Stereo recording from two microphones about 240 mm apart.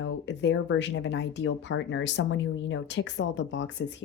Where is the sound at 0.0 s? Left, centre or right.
Left.